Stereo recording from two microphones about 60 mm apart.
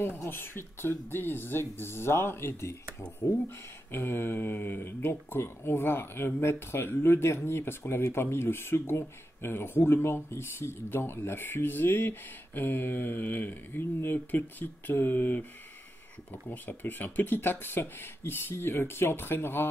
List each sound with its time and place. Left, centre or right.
0.2 s speech: left
16.4 s speech: left